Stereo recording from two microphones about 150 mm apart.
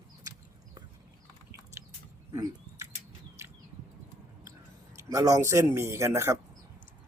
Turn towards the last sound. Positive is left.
turn(degrees=-20)  # may be behind; listen again after turning